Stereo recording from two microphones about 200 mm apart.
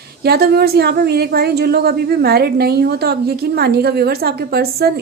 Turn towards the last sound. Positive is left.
turn(degrees=-50)  # may be behind; listen again after turning